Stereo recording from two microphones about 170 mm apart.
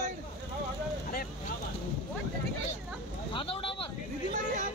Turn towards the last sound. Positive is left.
turn(degrees=30)  # may be behind; listen again after turning